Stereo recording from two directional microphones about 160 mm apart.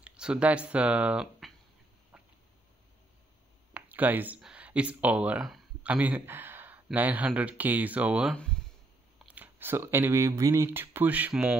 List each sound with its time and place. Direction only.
0.0 s speech: 5° right (ahead or behind)
3.7 s speech: 10° right (ahead or behind)
8.4 s speech: 5° left (ahead or behind)
9.2 s speech: 10° right (ahead or behind)